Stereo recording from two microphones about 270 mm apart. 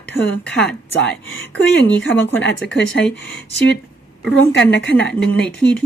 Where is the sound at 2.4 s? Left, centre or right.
Left.